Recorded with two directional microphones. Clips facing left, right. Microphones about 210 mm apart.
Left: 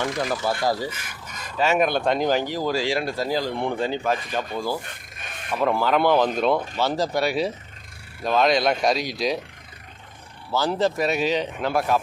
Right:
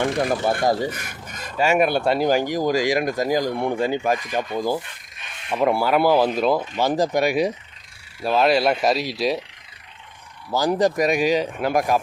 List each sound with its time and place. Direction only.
0.0 s speech: 25° right (ahead or behind)
0.9 s filing: 45° right (ahead or behind)
1.5 s speech: 10° right (ahead or behind)
4.8 s rub: 45° left (ahead or behind)
5.5 s speech: 10° right (ahead or behind)
6.7 s speech: 15° right (ahead or behind)
10.5 s speech: 15° right (ahead or behind)